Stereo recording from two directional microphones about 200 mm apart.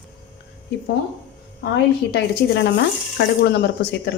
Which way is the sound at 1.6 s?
55° left (ahead or behind).